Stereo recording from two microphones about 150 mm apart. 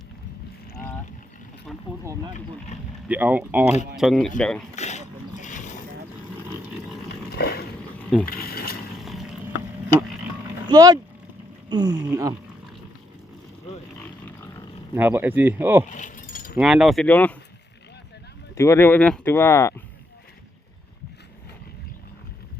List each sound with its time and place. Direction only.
3.1 s speech: 10° right (ahead or behind)
3.9 s speech: centre (ahead or behind)
4.7 s a sound: 50° left (ahead or behind)
7.3 s boat: 90° left
8.3 s a sound: 80° left
9.0 s a sound: centre (ahead or behind)
10.7 s speech: 25° right (ahead or behind)
14.9 s speech: 10° right (ahead or behind)
15.9 s keys jangling: 60° left (ahead or behind)
16.6 s speech: 5° right (ahead or behind)
17.1 s speech: 10° left (ahead or behind)
18.5 s speech: 20° left (ahead or behind)